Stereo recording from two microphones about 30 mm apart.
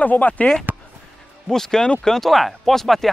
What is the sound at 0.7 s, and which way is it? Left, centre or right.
Music, right.